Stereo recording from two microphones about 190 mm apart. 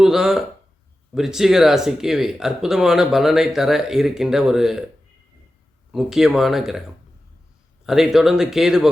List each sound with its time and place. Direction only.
0.0 s a sound: 5° right (ahead or behind)
1.1 s speech: centre (ahead or behind)
5.9 s speech: centre (ahead or behind)
7.9 s speech: centre (ahead or behind)